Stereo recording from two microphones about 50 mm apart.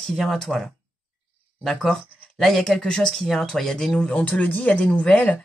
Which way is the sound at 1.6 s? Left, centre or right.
Centre.